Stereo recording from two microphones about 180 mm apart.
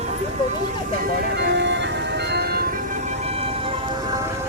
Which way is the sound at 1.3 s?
75° right (ahead or behind).